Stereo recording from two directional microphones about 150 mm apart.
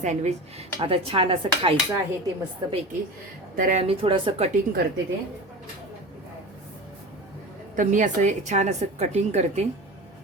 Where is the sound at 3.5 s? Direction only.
60° right (ahead or behind).